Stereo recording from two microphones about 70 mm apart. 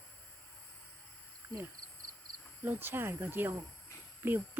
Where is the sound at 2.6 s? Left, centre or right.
Right.